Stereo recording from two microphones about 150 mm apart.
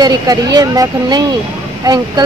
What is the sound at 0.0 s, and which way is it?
Speech, 25° right (ahead or behind).